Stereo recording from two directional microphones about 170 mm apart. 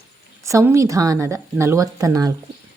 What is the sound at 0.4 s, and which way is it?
A woman's voice, 15° right (ahead or behind).